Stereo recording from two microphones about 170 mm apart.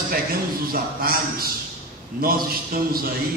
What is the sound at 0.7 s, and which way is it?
Speech, 60° right (ahead or behind).